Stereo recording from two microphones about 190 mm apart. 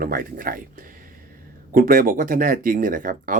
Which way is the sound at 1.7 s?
45° right (ahead or behind).